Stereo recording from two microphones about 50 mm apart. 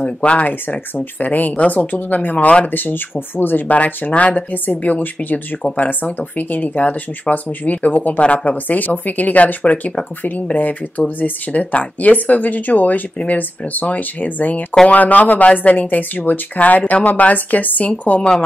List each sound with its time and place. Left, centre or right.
0.0 s speech: left
14.7 s speech: left
15.0 s speech: left